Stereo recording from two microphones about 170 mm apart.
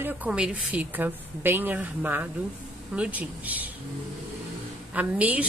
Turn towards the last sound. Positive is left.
turn(degrees=-10)  # may be behind; listen again after turning